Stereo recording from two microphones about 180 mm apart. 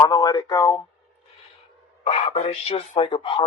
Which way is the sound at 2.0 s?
35° left (ahead or behind).